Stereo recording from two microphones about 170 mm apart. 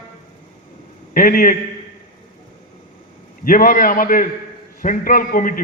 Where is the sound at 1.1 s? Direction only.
55° left (ahead or behind).